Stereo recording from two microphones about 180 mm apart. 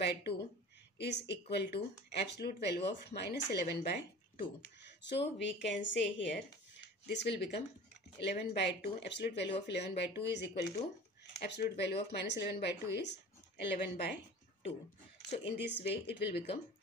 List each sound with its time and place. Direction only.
0.0 s a woman's voice: 65° left (ahead or behind)
5.4 s a woman's voice: 80° left
15.2 s speech: 70° left (ahead or behind)